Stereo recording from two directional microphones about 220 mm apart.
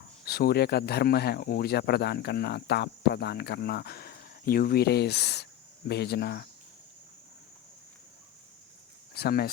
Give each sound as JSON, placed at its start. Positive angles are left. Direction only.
{"t": 0.3, "sound": "speech", "side_deg": 45}
{"t": 9.1, "sound": "speech", "side_deg": 45}